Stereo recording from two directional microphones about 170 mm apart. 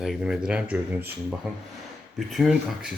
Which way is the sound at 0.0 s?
Centre (ahead or behind).